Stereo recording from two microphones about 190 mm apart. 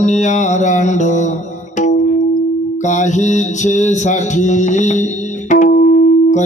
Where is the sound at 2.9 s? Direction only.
40° left (ahead or behind).